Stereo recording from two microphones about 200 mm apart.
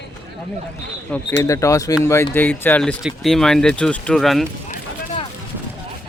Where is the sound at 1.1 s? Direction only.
5° left (ahead or behind).